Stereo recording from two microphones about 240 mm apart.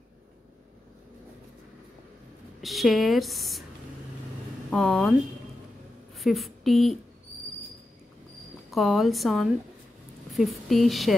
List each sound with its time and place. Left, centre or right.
2.6 s speech: centre
4.6 s speech: centre
6.1 s speech: centre
8.6 s a woman's voice: centre